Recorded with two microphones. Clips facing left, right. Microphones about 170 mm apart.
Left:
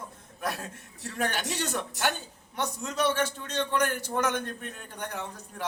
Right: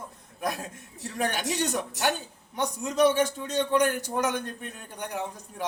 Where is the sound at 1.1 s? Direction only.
15° right (ahead or behind).